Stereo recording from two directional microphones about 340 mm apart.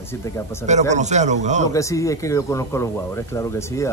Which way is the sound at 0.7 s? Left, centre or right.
Right.